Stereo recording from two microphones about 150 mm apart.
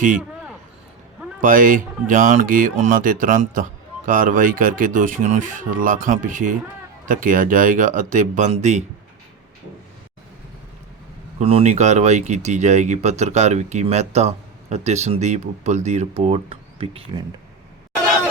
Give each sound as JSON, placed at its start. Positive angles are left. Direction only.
{"t": 1.4, "sound": "speech", "side_deg": -65}
{"t": 11.3, "sound": "speech", "side_deg": -45}